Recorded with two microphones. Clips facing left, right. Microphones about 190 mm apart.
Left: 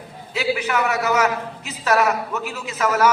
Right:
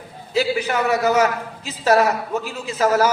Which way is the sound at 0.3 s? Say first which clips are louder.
Right 2 dB; 35° right (ahead or behind).